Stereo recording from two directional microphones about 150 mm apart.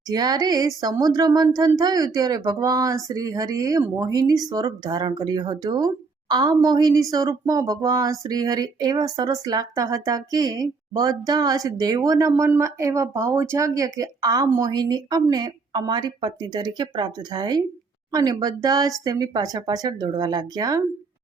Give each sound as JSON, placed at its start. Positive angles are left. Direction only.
{"t": 0.1, "sound": "speech", "side_deg": -25}